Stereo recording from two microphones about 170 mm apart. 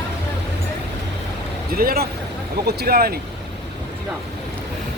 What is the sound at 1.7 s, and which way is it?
Speech, 65° right (ahead or behind).